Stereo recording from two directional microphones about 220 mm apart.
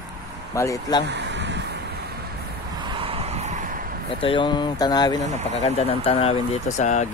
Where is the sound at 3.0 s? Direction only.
25° right (ahead or behind).